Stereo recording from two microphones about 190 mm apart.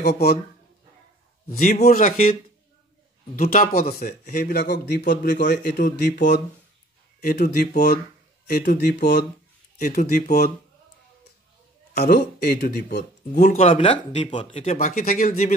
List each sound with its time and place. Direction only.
1.5 s speech: 50° left (ahead or behind)
3.3 s a man's voice: 50° left (ahead or behind)
11.9 s a man's voice: 55° left (ahead or behind)
13.3 s speech: 35° left (ahead or behind)
14.6 s speech: 40° left (ahead or behind)